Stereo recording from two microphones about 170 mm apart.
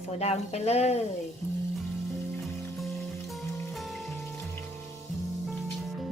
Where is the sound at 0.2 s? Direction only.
40° left (ahead or behind).